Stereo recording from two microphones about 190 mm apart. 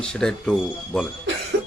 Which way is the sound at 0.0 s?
5° left (ahead or behind).